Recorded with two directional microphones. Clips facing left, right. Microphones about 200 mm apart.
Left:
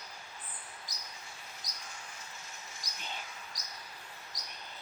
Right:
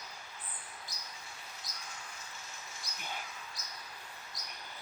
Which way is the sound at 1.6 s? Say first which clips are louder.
Even; 15° left (ahead or behind).